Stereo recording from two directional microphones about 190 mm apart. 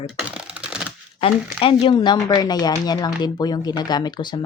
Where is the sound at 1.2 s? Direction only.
30° left (ahead or behind).